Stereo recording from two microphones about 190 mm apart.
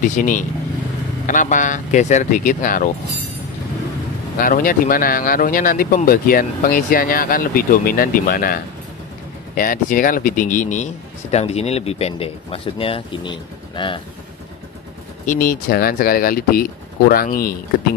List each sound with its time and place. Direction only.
0.2 s speech: 40° left (ahead or behind)
4.4 s speech: 45° left (ahead or behind)
9.6 s speech: 45° left (ahead or behind); by 14.0 s 25° left (ahead or behind)
15.2 s speech: 50° left (ahead or behind)